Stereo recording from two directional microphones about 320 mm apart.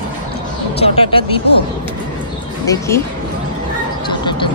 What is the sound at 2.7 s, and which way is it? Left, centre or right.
Speech, centre.